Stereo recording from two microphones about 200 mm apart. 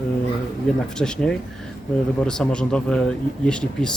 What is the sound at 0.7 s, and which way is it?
Speech, 5° left (ahead or behind).